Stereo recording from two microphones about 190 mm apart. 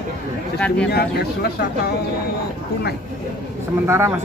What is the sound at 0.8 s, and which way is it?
Speech, 60° left (ahead or behind).